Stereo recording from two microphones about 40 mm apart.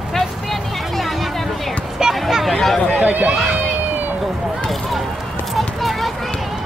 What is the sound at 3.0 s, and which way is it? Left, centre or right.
Run, right.